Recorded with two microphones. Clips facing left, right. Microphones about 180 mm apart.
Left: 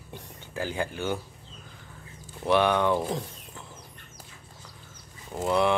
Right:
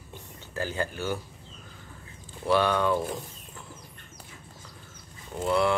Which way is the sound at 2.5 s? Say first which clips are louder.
Left 1 dB; 20° left (ahead or behind).